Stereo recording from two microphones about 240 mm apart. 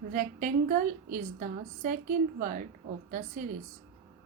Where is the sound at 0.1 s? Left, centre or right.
Right.